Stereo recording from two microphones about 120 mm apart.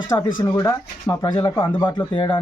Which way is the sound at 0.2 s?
40° left (ahead or behind).